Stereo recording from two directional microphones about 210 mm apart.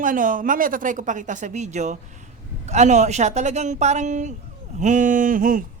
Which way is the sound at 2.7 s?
35° right (ahead or behind).